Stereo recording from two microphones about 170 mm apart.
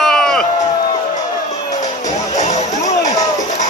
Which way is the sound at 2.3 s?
45° left (ahead or behind).